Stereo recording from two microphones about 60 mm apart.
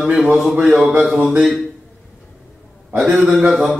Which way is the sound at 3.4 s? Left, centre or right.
Centre.